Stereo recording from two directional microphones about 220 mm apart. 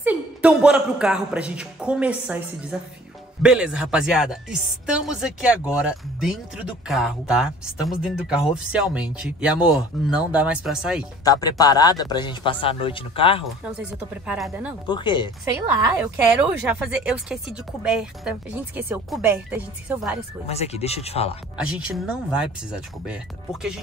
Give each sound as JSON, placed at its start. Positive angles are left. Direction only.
{"t": 0.0, "sound": "speech", "side_deg": -5}
{"t": 11.2, "sound": "speech", "side_deg": 15}
{"t": 14.2, "sound": "speech", "side_deg": -5}
{"t": 14.9, "sound": "speech", "side_deg": 20}
{"t": 16.0, "sound": "speech", "side_deg": -5}
{"t": 20.4, "sound": "speech", "side_deg": 30}
{"t": 21.5, "sound": "speech", "side_deg": -5}